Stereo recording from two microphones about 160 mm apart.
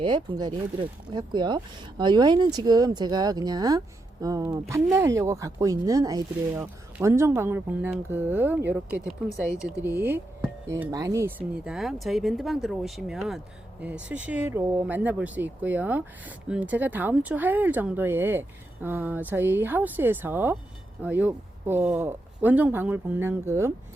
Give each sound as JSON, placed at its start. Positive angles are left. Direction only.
{"t": 0.0, "sound": "speech", "side_deg": -25}